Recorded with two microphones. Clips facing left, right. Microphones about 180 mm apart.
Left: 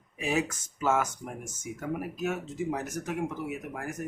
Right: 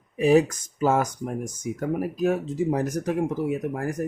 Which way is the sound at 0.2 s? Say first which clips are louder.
Right 11 dB; 35° right (ahead or behind).